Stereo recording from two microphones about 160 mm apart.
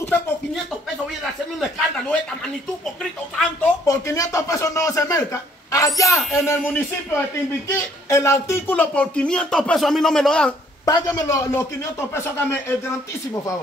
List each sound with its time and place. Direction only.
1.8 s a man's voice: 5° left (ahead or behind)
3.8 s speech: 20° left (ahead or behind); by 10.5 s 5° left (ahead or behind)
10.9 s speech: 25° left (ahead or behind)